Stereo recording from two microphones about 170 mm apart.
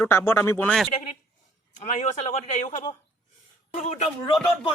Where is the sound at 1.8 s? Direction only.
45° left (ahead or behind).